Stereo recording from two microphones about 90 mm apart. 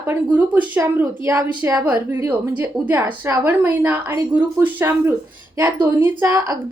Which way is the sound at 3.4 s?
20° right (ahead or behind).